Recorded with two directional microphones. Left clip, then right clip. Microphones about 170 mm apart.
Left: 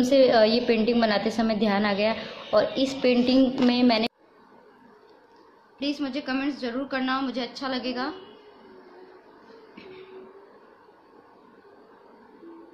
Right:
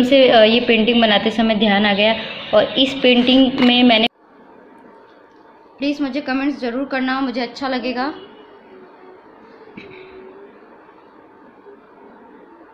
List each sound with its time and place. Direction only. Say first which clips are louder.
0.1 s a woman's voice: right 8 dB; 5° left (ahead or behind)
5.8 s a woman's voice: right 8 dB; 15° right (ahead or behind)